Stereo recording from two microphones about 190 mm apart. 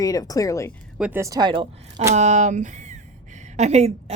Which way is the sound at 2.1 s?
40° right (ahead or behind).